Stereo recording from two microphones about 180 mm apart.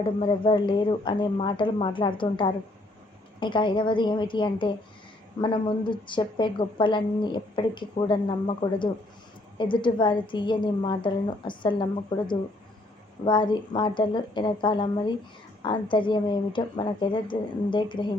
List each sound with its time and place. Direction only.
0.2 s a woman's voice: 30° left (ahead or behind)